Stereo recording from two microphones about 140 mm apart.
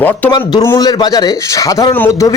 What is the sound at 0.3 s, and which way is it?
A man's voice, 30° left (ahead or behind).